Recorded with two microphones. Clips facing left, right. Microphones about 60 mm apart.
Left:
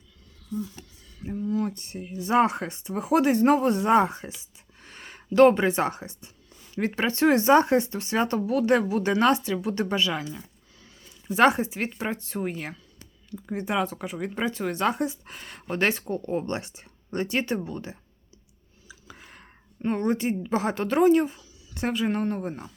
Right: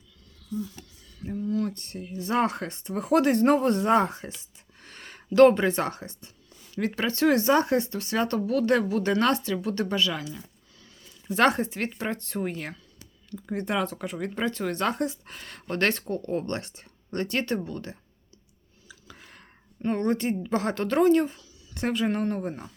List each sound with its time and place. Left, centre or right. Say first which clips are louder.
0.8 s speech: even; centre
6.7 s speech: left 1 dB; left
11.3 s speech: left 2 dB; centre
18.9 s a sound: left 2 dB; centre
19.9 s speech: even; centre